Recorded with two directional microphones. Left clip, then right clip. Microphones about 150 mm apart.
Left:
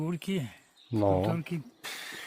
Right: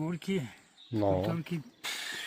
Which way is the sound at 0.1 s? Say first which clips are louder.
Even; 90° left.